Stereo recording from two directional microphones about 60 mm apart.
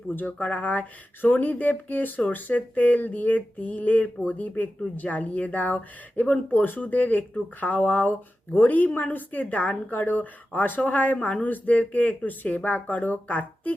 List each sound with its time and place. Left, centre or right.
0.2 s speech: left